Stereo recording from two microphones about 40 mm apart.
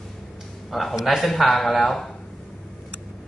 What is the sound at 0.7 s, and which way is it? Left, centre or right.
A man's voice, centre.